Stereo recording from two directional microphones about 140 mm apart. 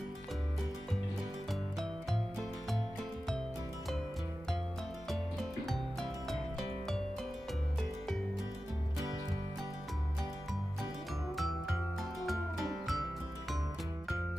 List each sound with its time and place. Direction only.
5.6 s music: centre (ahead or behind)
12.2 s music: centre (ahead or behind)